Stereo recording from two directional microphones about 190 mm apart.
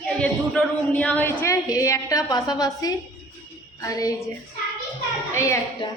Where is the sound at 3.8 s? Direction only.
20° left (ahead or behind).